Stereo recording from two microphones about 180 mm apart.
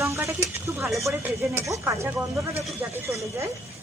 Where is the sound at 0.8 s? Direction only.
Centre (ahead or behind).